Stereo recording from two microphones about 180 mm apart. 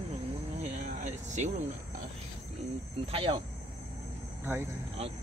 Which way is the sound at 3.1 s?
30° right (ahead or behind).